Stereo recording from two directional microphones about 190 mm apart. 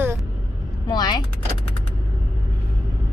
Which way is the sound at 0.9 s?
20° left (ahead or behind).